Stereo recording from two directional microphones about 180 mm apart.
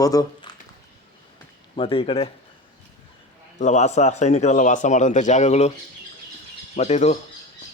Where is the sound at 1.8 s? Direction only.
30° left (ahead or behind).